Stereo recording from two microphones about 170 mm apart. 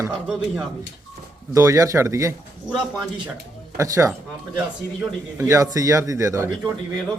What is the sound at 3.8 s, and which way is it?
A man's voice, 15° right (ahead or behind).